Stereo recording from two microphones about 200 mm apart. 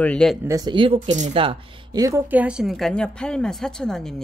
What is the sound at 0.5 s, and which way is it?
Speech, 20° right (ahead or behind).